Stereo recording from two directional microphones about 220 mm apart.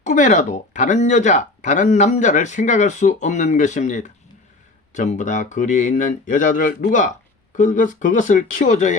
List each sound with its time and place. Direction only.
0.0 s speech: 35° left (ahead or behind)